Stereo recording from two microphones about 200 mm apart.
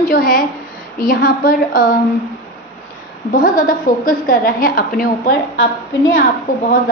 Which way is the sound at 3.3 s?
45° left (ahead or behind).